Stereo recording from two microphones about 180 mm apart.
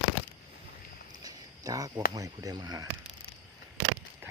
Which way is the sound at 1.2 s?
20° right (ahead or behind).